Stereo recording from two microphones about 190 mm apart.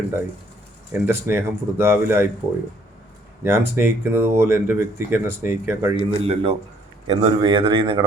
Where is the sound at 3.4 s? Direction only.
10° right (ahead or behind).